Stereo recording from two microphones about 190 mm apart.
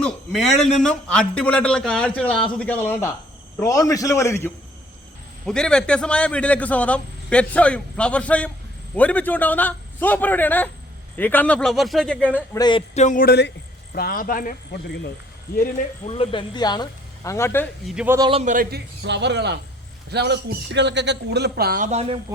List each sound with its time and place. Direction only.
0.0 s a man's voice: centre (ahead or behind)
12.5 s speech: 25° left (ahead or behind)
12.9 s speech: 40° left (ahead or behind)
16.1 s speech: 30° left (ahead or behind); by 17.7 s 10° left (ahead or behind)
17.8 s a man's voice: 5° right (ahead or behind)
18.2 s speech: 30° right (ahead or behind)
18.4 s a man's voice: 45° right (ahead or behind)
21.8 s speech: 35° right (ahead or behind)